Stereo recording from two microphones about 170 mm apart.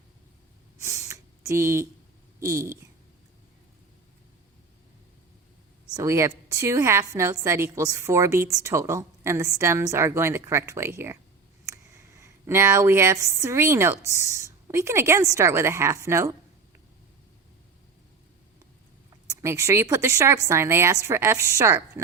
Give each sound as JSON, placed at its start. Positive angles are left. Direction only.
{"t": 0.8, "sound": "a sound", "side_deg": -15}
{"t": 2.4, "sound": "a woman's voice", "side_deg": -15}
{"t": 5.9, "sound": "a woman's voice", "side_deg": -15}
{"t": 19.3, "sound": "a woman's voice", "side_deg": -15}